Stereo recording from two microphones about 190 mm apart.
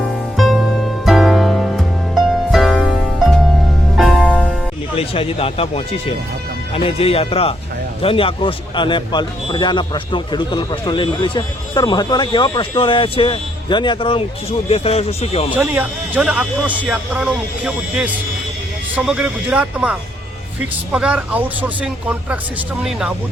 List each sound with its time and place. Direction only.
0.3 s music: centre (ahead or behind)
4.9 s a man's voice: 30° left (ahead or behind)
15.5 s speech: 10° right (ahead or behind)